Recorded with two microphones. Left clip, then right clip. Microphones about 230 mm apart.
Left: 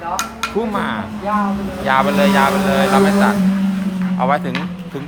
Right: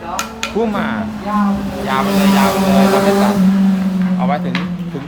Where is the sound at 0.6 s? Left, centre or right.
Centre.